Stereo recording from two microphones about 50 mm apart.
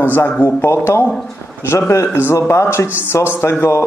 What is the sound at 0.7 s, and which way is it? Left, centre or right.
A man's voice, left.